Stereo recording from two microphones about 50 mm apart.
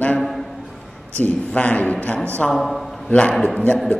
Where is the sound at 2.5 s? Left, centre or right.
Centre.